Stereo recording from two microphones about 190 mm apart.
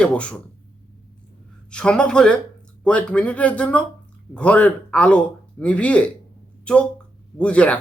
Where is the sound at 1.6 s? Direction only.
5° left (ahead or behind).